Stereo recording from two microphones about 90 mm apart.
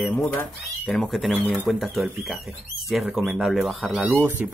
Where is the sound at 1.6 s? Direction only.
Centre (ahead or behind).